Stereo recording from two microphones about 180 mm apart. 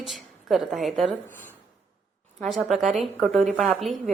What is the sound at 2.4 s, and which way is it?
A woman's voice, centre (ahead or behind).